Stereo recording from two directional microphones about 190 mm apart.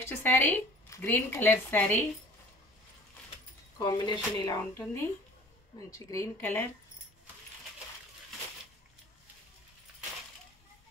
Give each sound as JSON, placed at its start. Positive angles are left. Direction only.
{"t": 0.0, "sound": "speech", "side_deg": 10}
{"t": 3.7, "sound": "speech", "side_deg": 20}